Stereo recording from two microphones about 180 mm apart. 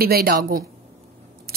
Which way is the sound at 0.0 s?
55° right (ahead or behind).